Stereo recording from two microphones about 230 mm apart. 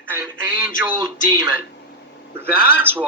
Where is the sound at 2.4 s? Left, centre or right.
Centre.